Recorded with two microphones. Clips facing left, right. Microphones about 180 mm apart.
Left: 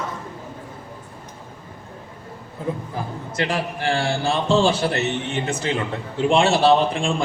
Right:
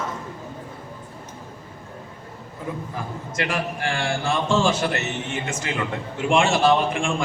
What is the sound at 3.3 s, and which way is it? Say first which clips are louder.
A man's voice: left 2 dB; 35° left (ahead or behind).